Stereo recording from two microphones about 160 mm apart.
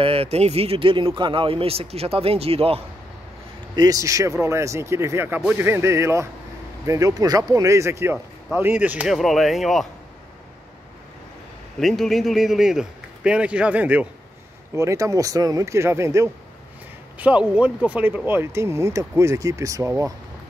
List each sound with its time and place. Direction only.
0.0 s speech: 40° right (ahead or behind)
3.7 s a man's voice: 20° right (ahead or behind); by 9.8 s centre (ahead or behind)
11.8 s a man's voice: centre (ahead or behind); by 20.1 s 20° right (ahead or behind)